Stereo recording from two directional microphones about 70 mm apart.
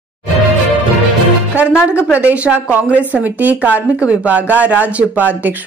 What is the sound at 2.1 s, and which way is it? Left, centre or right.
Speech, right.